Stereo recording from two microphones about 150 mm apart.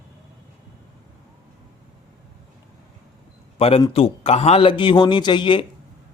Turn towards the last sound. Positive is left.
turn(degrees=35)  # may be behind; listen again after turning